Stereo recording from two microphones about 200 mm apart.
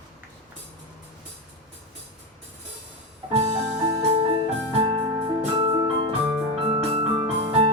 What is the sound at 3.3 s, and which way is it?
Music, 30° right (ahead or behind).